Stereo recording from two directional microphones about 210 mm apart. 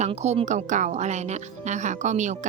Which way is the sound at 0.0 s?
30° right (ahead or behind).